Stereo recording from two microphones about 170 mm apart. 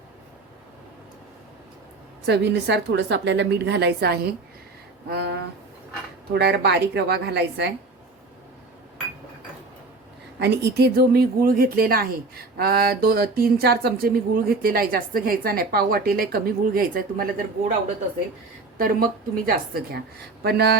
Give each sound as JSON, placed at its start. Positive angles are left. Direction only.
{"t": 2.2, "sound": "a woman's voice", "side_deg": -85}
{"t": 6.3, "sound": "a woman's voice", "side_deg": -75}
{"t": 10.4, "sound": "speech", "side_deg": -75}
{"t": 18.8, "sound": "speech", "side_deg": -55}
{"t": 20.4, "sound": "a woman's voice", "side_deg": -70}